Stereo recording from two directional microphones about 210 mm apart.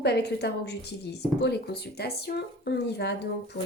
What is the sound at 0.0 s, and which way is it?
Speech, 50° left (ahead or behind).